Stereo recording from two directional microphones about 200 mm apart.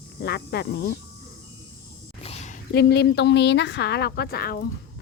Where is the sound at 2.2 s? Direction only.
30° left (ahead or behind).